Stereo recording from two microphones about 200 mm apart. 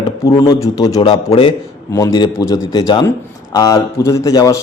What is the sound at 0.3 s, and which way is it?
Speech, 15° left (ahead or behind).